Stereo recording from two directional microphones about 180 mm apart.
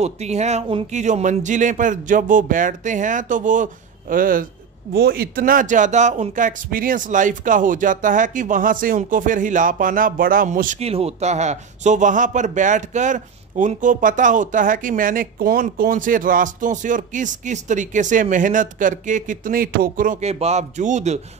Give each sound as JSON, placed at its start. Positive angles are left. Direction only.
{"t": 0.0, "sound": "speech", "side_deg": -35}